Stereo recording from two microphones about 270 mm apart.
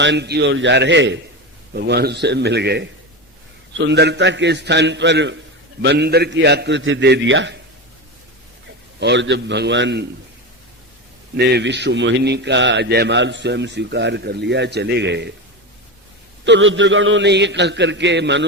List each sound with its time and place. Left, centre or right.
0.0 s a man's voice: right
9.0 s a man's voice: right
11.3 s a man's voice: right
16.4 s a man's voice: right